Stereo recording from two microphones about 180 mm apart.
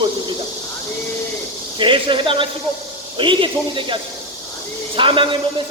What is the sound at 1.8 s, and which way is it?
A man's voice, 30° right (ahead or behind).